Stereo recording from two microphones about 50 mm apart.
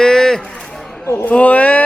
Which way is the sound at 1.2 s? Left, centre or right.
Left.